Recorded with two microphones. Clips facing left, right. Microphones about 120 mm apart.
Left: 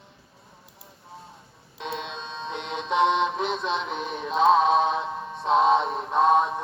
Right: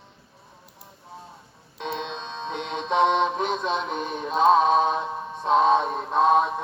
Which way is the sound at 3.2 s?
45° right (ahead or behind).